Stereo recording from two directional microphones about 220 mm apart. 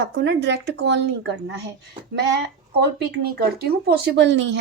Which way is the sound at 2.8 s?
50° right (ahead or behind).